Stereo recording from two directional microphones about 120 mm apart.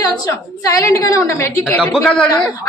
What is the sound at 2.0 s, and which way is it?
Speech, 10° left (ahead or behind).